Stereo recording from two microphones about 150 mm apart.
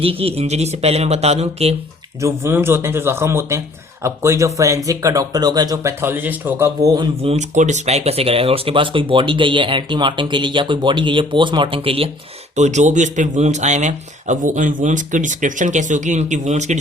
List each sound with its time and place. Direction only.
0.0 s speech: 40° right (ahead or behind)
2.2 s speech: 15° right (ahead or behind)
6.8 s speech: 25° right (ahead or behind)
7.2 s speech: 45° right (ahead or behind)
12.5 s a man's voice: 50° right (ahead or behind)